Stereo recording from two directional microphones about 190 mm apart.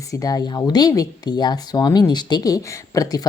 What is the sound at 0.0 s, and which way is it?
Speech, 15° left (ahead or behind).